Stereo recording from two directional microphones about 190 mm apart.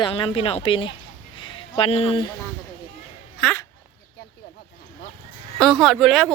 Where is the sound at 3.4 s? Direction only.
10° left (ahead or behind).